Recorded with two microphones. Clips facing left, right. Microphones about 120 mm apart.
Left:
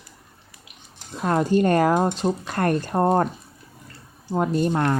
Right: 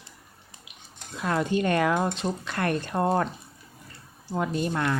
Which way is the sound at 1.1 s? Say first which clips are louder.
Left 5 dB; 40° left (ahead or behind).